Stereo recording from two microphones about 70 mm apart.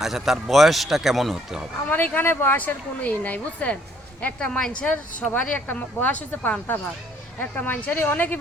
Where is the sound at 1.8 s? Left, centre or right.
Left.